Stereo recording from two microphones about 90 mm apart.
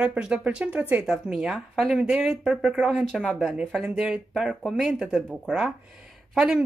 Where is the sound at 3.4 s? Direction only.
10° right (ahead or behind).